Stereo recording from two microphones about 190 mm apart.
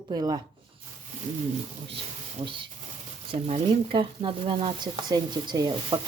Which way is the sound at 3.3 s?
30° right (ahead or behind).